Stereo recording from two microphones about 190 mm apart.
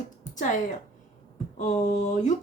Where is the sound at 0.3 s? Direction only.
40° left (ahead or behind).